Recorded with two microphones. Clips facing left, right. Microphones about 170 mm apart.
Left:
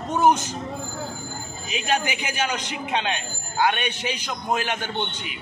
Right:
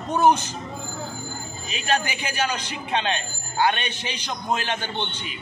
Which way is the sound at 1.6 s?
15° left (ahead or behind).